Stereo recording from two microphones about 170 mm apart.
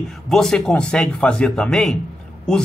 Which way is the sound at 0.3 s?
5° left (ahead or behind).